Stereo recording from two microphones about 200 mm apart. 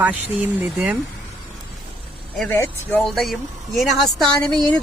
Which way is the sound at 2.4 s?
10° left (ahead or behind).